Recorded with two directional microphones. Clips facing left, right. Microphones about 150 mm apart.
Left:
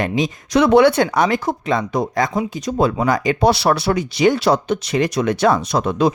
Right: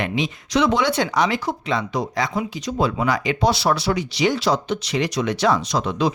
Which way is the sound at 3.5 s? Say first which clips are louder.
Left 4 dB; 60° left (ahead or behind).